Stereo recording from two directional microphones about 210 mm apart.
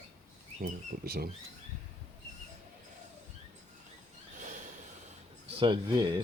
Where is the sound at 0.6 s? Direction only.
45° right (ahead or behind).